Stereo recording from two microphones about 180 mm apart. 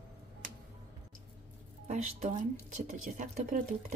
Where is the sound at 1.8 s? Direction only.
40° right (ahead or behind).